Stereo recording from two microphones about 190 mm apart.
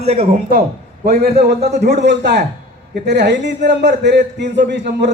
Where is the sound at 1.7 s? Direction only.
60° right (ahead or behind).